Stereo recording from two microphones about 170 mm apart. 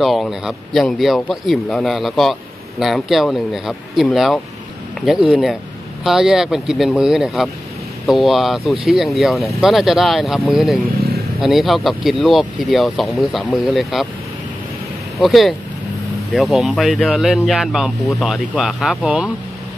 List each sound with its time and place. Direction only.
0.0 s speech: centre (ahead or behind)
11.0 s vehicle: 65° right (ahead or behind)
11.4 s speech: centre (ahead or behind)
15.1 s speech: centre (ahead or behind)